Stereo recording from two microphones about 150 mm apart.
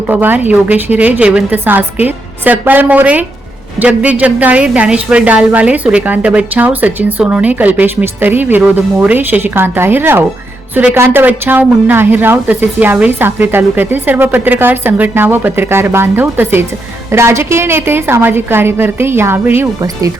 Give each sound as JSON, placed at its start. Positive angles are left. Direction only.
{"t": 0.1, "sound": "a woman's voice", "side_deg": -10}